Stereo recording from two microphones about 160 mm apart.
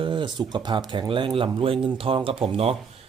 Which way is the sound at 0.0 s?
30° right (ahead or behind).